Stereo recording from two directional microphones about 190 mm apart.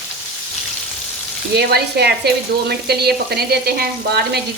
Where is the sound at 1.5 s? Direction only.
60° right (ahead or behind).